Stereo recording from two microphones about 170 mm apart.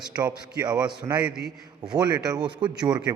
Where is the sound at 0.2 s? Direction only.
20° right (ahead or behind).